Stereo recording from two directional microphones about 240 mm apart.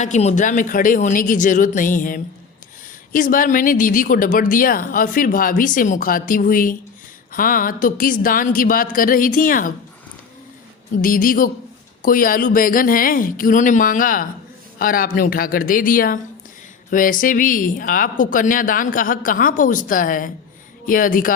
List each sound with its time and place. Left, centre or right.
0.0 s a woman's voice: left
10.9 s a woman's voice: left